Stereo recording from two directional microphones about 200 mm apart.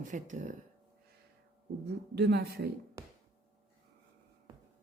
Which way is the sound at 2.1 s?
55° right (ahead or behind).